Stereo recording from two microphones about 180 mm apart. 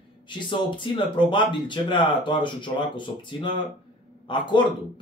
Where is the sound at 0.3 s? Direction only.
25° left (ahead or behind).